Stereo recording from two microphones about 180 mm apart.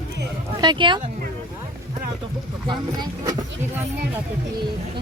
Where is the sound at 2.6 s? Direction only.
20° right (ahead or behind).